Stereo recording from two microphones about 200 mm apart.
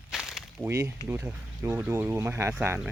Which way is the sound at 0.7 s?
15° right (ahead or behind).